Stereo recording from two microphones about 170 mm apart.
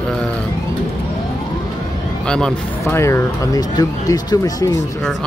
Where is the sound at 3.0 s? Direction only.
15° left (ahead or behind).